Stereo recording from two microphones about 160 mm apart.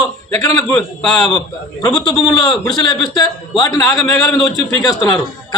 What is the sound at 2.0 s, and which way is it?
A man's voice, 30° left (ahead or behind).